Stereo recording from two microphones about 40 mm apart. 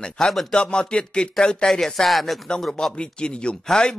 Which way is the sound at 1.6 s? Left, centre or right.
Centre.